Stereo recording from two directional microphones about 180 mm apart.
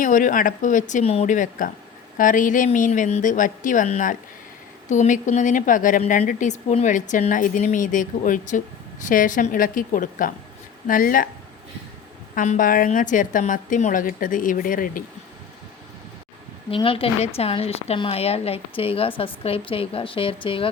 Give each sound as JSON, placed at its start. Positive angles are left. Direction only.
{"t": 0.0, "sound": "a woman's voice", "side_deg": 45}
{"t": 12.3, "sound": "a woman's voice", "side_deg": 50}
{"t": 16.6, "sound": "a woman's voice", "side_deg": 30}